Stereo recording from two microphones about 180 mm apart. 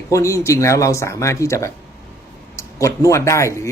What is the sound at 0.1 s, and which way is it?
A man's voice, 15° left (ahead or behind).